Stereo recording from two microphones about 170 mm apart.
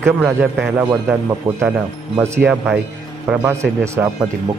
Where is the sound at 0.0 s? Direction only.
5° right (ahead or behind).